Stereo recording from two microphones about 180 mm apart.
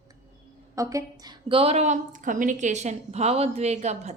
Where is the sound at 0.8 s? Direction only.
20° right (ahead or behind).